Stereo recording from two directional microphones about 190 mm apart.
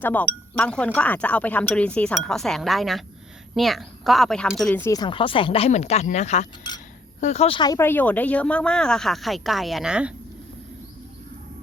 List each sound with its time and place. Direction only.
0.0 s speech: 10° left (ahead or behind)